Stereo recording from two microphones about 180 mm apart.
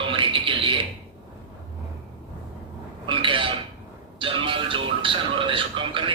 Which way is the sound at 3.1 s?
30° right (ahead or behind).